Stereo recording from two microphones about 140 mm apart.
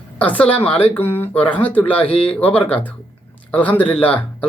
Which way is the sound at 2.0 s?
40° left (ahead or behind).